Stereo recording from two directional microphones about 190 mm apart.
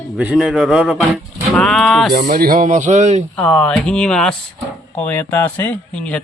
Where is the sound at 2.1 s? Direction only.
50° right (ahead or behind).